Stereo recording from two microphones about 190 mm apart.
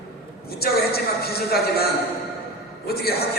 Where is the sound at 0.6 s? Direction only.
55° left (ahead or behind).